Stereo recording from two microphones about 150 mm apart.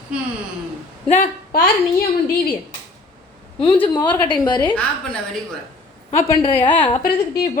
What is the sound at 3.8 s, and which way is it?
Speech, 30° left (ahead or behind).